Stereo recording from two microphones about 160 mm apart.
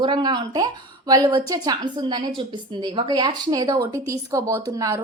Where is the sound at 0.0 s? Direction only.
30° right (ahead or behind).